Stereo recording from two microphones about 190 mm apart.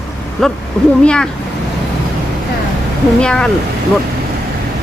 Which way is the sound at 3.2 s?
5° left (ahead or behind).